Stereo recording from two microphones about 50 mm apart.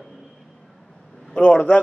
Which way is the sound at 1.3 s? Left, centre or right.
Left.